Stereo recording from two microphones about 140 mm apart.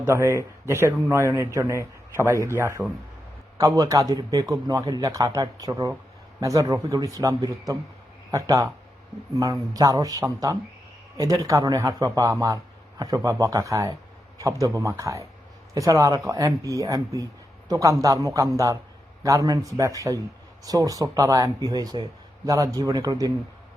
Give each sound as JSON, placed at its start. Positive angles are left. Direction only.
{"t": 0.0, "sound": "a man's voice", "side_deg": -15}